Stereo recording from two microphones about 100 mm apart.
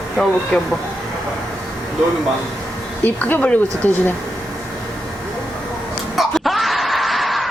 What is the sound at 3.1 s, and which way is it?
Speech, 20° left (ahead or behind).